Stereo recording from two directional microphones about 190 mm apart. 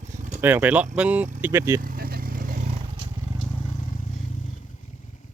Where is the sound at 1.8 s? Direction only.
50° right (ahead or behind).